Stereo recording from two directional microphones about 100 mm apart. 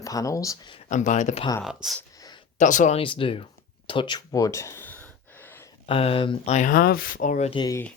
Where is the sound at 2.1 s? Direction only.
40° left (ahead or behind).